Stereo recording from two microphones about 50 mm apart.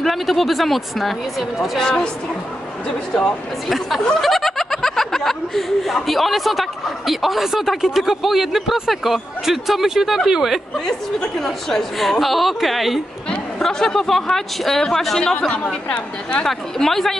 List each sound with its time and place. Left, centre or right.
0.0 s speech: centre
1.8 s speech: centre
3.2 s speech: centre
4.2 s speech: centre
10.9 s speech: centre
13.6 s speech: centre
15.5 s a woman's voice: left
16.4 s speech: centre